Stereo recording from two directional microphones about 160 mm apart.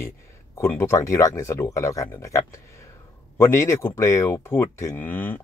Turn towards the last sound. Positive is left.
turn(degrees=10)  # may be behind; listen again after turning